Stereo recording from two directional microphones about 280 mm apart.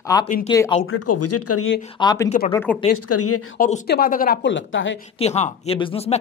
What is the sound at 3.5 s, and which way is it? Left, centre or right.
Speech, left.